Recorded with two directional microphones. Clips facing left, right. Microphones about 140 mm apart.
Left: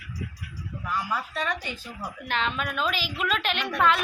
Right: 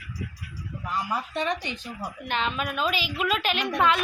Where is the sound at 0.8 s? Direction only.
20° right (ahead or behind).